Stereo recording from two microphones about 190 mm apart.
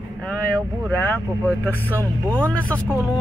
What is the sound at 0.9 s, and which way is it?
Speech, 10° left (ahead or behind).